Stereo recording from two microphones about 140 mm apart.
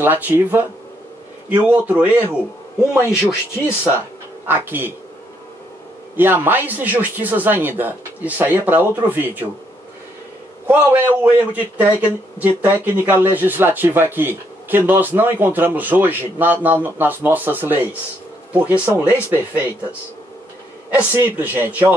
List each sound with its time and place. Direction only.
0.0 s a man's voice: 15° right (ahead or behind)
3.1 s speech: 20° left (ahead or behind)
4.5 s a man's voice: 15° right (ahead or behind)
6.1 s a man's voice: 15° right (ahead or behind)
10.7 s a man's voice: 10° right (ahead or behind)
20.9 s a man's voice: 15° right (ahead or behind)